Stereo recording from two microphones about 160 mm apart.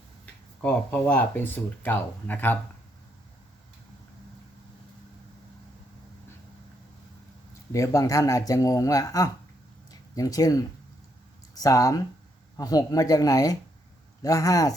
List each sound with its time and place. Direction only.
0.6 s speech: 10° left (ahead or behind)
7.7 s speech: 20° left (ahead or behind)
9.9 s a sound: 20° left (ahead or behind)
11.5 s speech: 20° left (ahead or behind)